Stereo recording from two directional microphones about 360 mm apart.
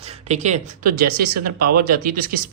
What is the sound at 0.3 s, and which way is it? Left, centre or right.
Speech, centre.